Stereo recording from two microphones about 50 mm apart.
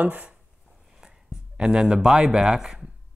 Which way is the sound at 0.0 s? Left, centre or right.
Right.